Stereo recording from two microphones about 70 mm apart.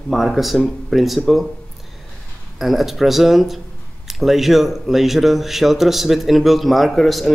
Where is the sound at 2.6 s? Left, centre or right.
Centre.